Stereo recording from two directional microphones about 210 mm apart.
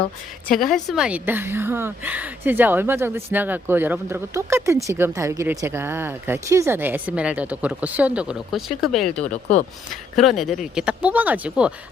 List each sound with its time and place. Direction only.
0.4 s a woman's voice: centre (ahead or behind)
9.3 s speech: 35° left (ahead or behind)
9.9 s speech: centre (ahead or behind)